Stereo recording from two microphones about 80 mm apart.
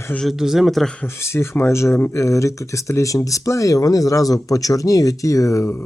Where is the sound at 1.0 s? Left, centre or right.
Left.